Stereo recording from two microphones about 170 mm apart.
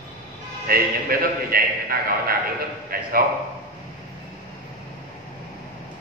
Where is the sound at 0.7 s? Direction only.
60° right (ahead or behind).